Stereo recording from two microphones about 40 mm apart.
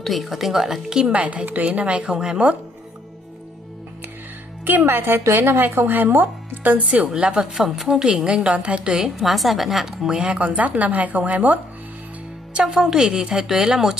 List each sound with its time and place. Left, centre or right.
0.0 s a woman's voice: centre
1.1 s a woman's voice: right
4.8 s speech: right
7.2 s a woman's voice: right
7.5 s a woman's voice: centre
8.9 s a woman's voice: centre
9.8 s a woman's voice: centre
10.4 s a woman's voice: right
12.7 s a woman's voice: centre